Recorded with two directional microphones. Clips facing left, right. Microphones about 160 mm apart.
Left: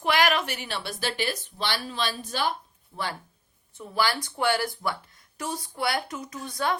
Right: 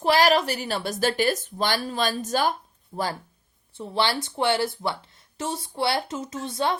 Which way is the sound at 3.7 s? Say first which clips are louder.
Right 2 dB; 30° right (ahead or behind).